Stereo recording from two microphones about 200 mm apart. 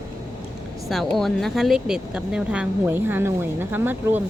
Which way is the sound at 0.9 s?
Centre (ahead or behind).